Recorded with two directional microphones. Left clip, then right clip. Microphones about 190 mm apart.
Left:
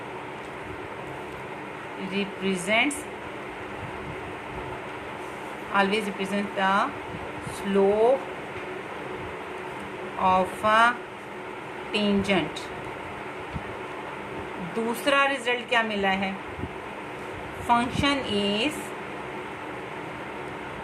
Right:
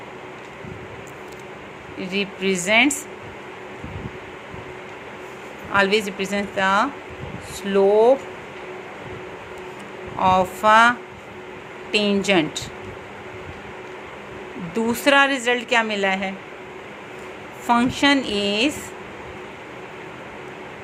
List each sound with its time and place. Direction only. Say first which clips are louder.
2.1 s a woman's voice: right 6 dB; 45° right (ahead or behind)
5.7 s a woman's voice: right 5 dB; 45° right (ahead or behind)
10.2 s a woman's voice: right 6 dB; 45° right (ahead or behind)
15.0 s a woman's voice: right 6 dB; 45° right (ahead or behind)
17.7 s a woman's voice: right 5 dB; 40° right (ahead or behind)